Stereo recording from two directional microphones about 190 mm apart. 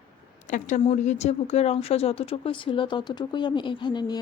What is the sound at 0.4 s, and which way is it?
A woman's voice, 40° left (ahead or behind).